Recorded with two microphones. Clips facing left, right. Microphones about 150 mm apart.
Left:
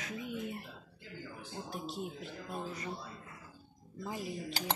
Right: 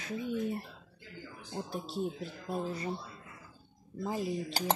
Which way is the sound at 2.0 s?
35° right (ahead or behind).